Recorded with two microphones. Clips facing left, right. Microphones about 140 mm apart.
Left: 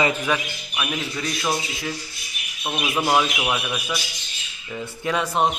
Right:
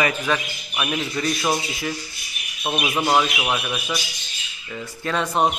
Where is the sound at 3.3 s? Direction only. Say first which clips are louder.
Even; 5° right (ahead or behind).